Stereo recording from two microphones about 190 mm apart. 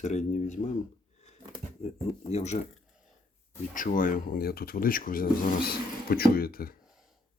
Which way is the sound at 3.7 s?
45° left (ahead or behind).